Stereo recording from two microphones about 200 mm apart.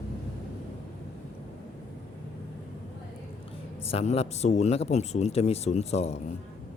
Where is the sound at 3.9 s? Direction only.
30° left (ahead or behind).